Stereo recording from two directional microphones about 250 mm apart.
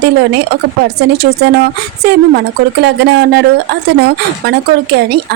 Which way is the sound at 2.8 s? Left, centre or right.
Right.